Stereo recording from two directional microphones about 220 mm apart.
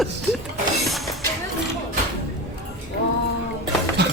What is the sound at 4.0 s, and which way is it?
Music, 50° right (ahead or behind).